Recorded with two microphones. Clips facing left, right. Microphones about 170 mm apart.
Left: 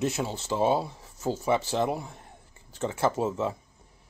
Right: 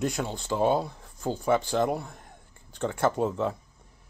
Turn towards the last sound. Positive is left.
turn(degrees=5)  # may be behind; listen again after turning